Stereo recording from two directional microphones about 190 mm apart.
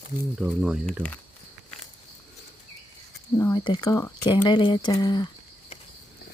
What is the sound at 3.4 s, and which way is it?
Speech, 20° left (ahead or behind).